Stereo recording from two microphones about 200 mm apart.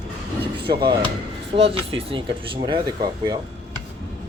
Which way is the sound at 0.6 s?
50° right (ahead or behind).